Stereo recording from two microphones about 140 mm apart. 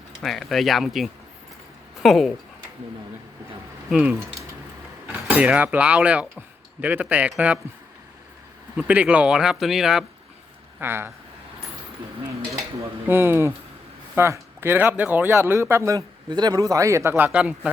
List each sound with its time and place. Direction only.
0.2 s speech: centre (ahead or behind)
3.8 s a man's voice: 10° right (ahead or behind)
8.7 s speech: 10° right (ahead or behind)
10.8 s speech: 15° right (ahead or behind)
12.2 s dishes: 20° right (ahead or behind)
14.2 s a man's voice: 15° right (ahead or behind)